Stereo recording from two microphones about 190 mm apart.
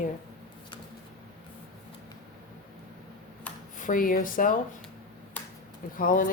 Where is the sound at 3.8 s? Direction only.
45° left (ahead or behind).